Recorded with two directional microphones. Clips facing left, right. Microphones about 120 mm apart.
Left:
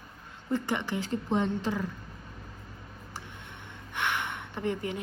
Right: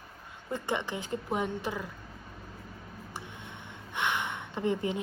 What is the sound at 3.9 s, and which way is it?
Gasp, 20° right (ahead or behind).